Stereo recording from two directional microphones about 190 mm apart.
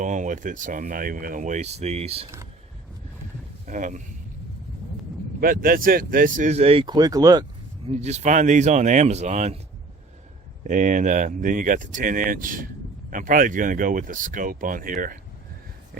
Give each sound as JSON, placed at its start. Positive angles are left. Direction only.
{"t": 0.0, "sound": "speech", "side_deg": -40}
{"t": 3.7, "sound": "speech", "side_deg": -40}
{"t": 5.4, "sound": "speech", "side_deg": -50}
{"t": 7.9, "sound": "speech", "side_deg": -35}
{"t": 10.6, "sound": "speech", "side_deg": -45}